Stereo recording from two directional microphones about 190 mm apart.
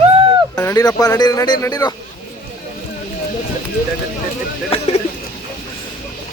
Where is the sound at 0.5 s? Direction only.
20° left (ahead or behind).